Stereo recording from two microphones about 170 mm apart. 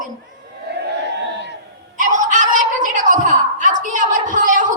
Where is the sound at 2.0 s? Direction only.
50° right (ahead or behind).